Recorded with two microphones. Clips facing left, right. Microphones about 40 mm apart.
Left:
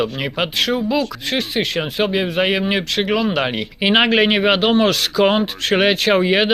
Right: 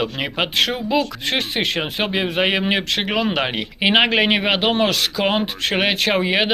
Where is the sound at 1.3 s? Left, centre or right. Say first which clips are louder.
Left 1 dB; right.